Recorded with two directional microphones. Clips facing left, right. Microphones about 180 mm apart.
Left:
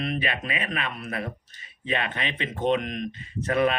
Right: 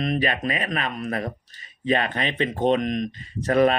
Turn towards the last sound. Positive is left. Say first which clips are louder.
# right 4 dB
turn(degrees=-40)  # may be behind; listen again after turning